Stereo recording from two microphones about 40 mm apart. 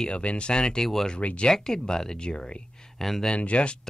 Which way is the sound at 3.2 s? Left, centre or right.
Left.